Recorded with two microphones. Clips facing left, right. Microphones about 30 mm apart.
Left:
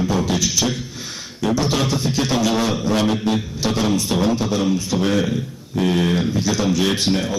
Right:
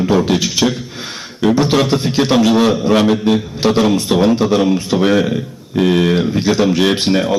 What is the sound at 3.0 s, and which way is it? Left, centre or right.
A man's voice, right.